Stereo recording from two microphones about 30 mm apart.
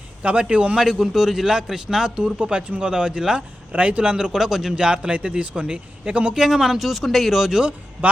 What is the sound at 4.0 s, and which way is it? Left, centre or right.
Speech, right.